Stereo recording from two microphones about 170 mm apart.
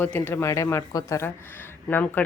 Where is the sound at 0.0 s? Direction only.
10° left (ahead or behind).